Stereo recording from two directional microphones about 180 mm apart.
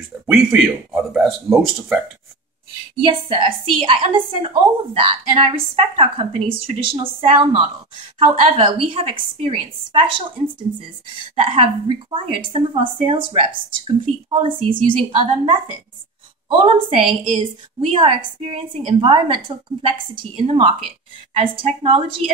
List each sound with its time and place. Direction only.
0.3 s a man's voice: centre (ahead or behind)
3.0 s a woman's voice: 30° right (ahead or behind)